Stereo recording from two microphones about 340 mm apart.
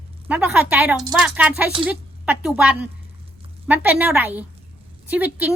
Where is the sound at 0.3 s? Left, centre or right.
Centre.